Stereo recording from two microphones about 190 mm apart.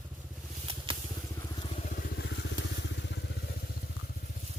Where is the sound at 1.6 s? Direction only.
30° left (ahead or behind).